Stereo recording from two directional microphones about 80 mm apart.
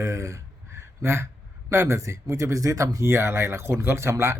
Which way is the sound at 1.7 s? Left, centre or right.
Right.